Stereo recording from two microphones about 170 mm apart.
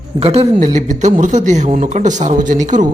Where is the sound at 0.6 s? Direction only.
45° right (ahead or behind).